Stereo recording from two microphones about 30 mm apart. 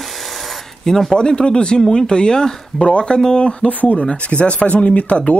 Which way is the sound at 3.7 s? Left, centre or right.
Left.